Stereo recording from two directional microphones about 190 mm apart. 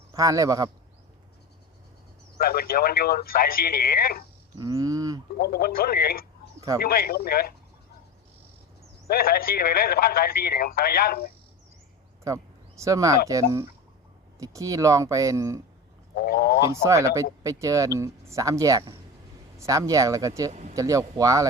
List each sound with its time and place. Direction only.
0.1 s a man's voice: 20° right (ahead or behind)
2.4 s a man's voice: 55° left (ahead or behind)
4.5 s a sound: 20° right (ahead or behind)
5.4 s a man's voice: 55° left (ahead or behind)
9.0 s a man's voice: 50° left (ahead or behind)
12.2 s speech: 15° right (ahead or behind)
16.1 s a man's voice: 50° left (ahead or behind)
16.7 s speech: 15° right (ahead or behind)
20.5 s speech: 35° right (ahead or behind)
20.7 s speech: 20° right (ahead or behind)